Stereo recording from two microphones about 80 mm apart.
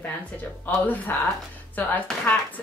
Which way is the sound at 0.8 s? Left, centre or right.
Left.